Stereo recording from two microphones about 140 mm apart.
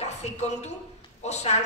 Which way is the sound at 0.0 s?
50° left (ahead or behind).